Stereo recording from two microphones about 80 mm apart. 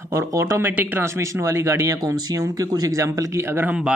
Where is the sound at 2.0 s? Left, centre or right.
Right.